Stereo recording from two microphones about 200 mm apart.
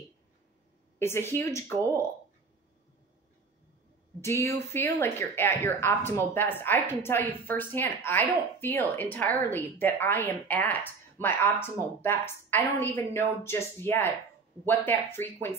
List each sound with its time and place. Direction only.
0.9 s speech: 10° left (ahead or behind)
4.2 s speech: 15° left (ahead or behind)